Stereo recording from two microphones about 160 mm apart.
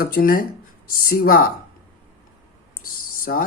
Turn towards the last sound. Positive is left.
turn(degrees=65)  # may be behind; listen again after turning